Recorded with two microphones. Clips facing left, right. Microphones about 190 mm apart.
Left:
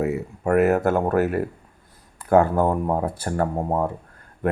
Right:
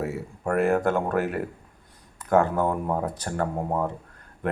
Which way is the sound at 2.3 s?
10° left (ahead or behind).